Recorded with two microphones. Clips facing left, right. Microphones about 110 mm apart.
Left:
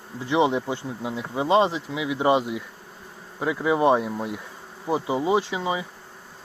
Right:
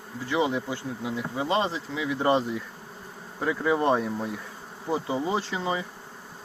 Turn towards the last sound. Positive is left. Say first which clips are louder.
# left 3 dB
turn(degrees=10)  # may be behind; listen again after turning